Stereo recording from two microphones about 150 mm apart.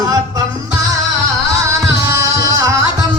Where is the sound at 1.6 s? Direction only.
20° right (ahead or behind).